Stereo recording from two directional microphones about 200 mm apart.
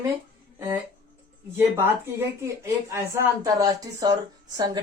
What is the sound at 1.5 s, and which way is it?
A woman's voice, 10° right (ahead or behind).